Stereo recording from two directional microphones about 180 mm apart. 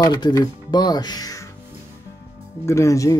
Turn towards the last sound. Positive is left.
turn(degrees=15)  # may be behind; listen again after turning